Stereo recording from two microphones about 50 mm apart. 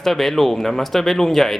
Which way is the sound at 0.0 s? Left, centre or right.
Centre.